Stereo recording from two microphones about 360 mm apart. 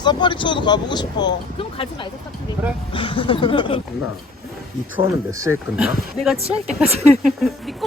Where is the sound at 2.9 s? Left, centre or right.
Centre.